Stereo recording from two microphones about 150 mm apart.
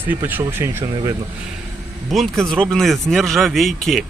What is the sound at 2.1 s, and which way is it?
Speech, centre (ahead or behind).